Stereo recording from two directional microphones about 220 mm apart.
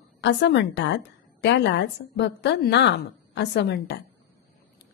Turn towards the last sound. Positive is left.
turn(degrees=50)  # may be behind; listen again after turning